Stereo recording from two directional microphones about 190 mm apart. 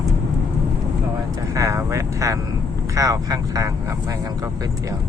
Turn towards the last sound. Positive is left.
turn(degrees=-15)  # may be behind; listen again after turning